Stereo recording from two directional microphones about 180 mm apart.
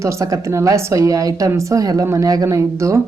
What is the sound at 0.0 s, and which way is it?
Speech, 15° right (ahead or behind).